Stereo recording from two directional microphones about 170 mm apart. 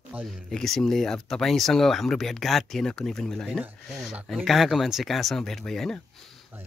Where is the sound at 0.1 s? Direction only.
10° right (ahead or behind).